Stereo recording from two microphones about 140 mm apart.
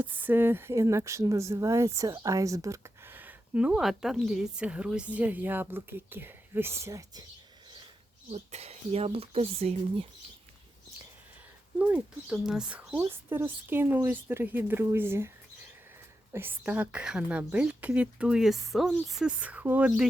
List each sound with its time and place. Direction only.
0.2 s speech: 15° right (ahead or behind)
8.3 s speech: 50° right (ahead or behind)
11.9 s speech: 5° right (ahead or behind)
13.0 s speech: 15° right (ahead or behind)
16.3 s speech: 15° right (ahead or behind)